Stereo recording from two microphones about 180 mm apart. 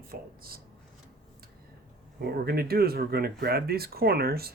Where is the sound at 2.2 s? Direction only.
60° right (ahead or behind).